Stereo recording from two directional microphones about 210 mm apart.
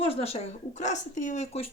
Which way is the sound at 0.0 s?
25° left (ahead or behind).